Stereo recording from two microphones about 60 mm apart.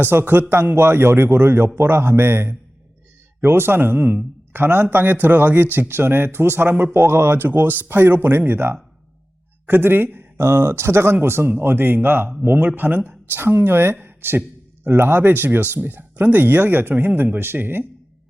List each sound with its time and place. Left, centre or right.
0.0 s speech: right
10.3 s speech: right